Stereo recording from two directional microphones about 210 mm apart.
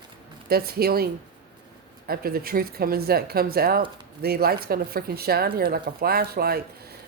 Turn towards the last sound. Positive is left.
turn(degrees=-45)  # may be behind; listen again after turning